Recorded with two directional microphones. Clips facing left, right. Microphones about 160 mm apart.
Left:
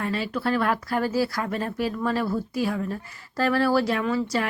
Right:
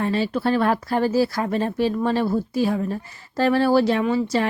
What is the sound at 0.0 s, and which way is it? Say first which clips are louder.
Speech: right 5 dB; 30° right (ahead or behind).